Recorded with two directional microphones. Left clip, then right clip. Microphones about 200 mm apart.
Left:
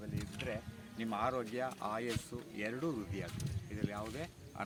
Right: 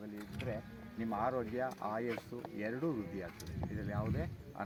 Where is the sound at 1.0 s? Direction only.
5° right (ahead or behind).